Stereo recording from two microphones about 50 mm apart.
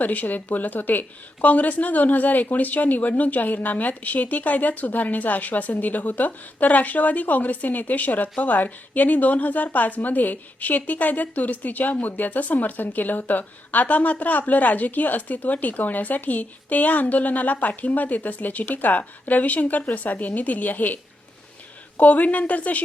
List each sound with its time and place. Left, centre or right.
0.0 s a woman's voice: left